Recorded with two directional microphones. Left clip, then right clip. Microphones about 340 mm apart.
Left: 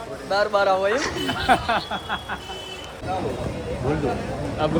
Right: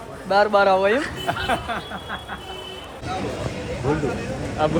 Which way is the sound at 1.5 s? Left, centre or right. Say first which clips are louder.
Left 7 dB; left.